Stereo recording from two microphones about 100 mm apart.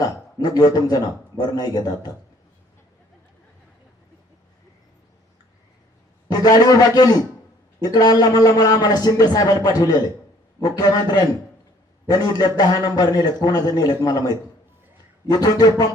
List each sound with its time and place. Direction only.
0.0 s a man's voice: 40° left (ahead or behind)
6.3 s a man's voice: 40° left (ahead or behind)